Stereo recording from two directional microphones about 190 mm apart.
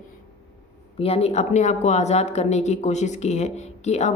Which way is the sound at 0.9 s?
30° left (ahead or behind).